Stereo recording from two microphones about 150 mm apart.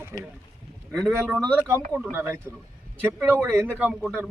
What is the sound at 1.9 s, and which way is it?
Speech, 20° right (ahead or behind).